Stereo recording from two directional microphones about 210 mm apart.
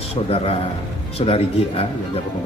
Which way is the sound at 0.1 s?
30° left (ahead or behind).